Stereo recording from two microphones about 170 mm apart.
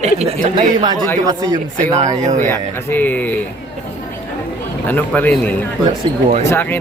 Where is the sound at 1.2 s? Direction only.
20° right (ahead or behind).